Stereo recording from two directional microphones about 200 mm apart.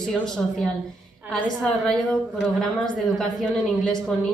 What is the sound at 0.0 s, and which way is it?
A woman's voice, 5° left (ahead or behind).